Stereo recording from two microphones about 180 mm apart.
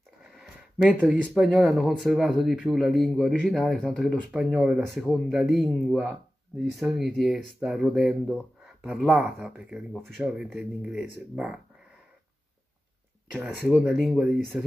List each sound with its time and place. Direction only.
0.2 s speech: centre (ahead or behind)
13.3 s speech: 5° right (ahead or behind)